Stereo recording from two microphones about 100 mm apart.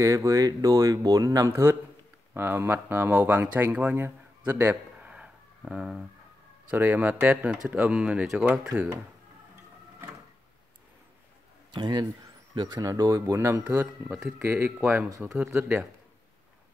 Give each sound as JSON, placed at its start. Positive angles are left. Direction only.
{"t": 0.0, "sound": "speech", "side_deg": -35}
{"t": 1.5, "sound": "a man's voice", "side_deg": -25}
{"t": 5.1, "sound": "chicken", "side_deg": -10}
{"t": 6.7, "sound": "speech", "side_deg": -20}
{"t": 11.7, "sound": "speech", "side_deg": -45}
{"t": 15.2, "sound": "speech", "side_deg": -10}